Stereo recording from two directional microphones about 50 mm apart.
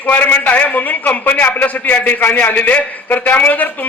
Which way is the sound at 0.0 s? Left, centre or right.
Left.